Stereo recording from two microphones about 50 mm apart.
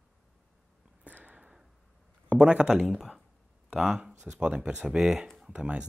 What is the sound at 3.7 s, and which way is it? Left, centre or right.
Speech, centre.